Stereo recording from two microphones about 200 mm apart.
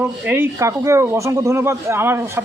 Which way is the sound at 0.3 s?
15° right (ahead or behind).